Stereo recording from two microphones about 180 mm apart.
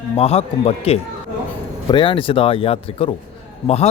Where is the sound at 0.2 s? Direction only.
35° left (ahead or behind).